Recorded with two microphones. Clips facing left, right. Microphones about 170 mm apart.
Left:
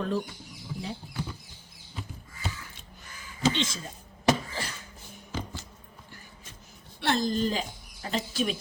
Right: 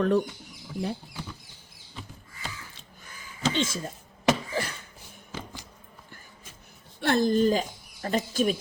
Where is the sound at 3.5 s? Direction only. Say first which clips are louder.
Right 3 dB; 50° right (ahead or behind).